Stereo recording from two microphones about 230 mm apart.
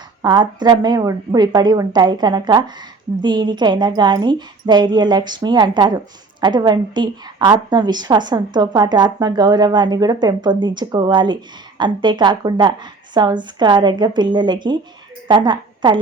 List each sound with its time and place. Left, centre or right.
0.2 s a woman's voice: centre